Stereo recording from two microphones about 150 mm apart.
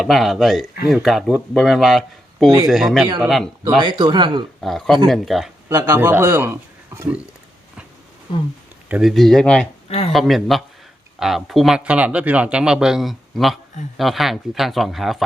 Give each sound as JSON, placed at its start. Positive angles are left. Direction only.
{"t": 0.0, "sound": "speech", "side_deg": 0}
{"t": 3.8, "sound": "speech", "side_deg": -30}
{"t": 4.6, "sound": "speech", "side_deg": 0}
{"t": 5.6, "sound": "speech", "side_deg": -20}
{"t": 8.9, "sound": "speech", "side_deg": 0}